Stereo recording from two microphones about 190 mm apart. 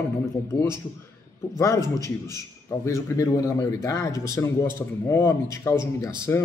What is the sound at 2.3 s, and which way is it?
A man's voice, 15° left (ahead or behind).